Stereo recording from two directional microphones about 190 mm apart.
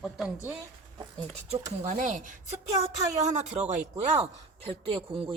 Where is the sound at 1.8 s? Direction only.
40° right (ahead or behind).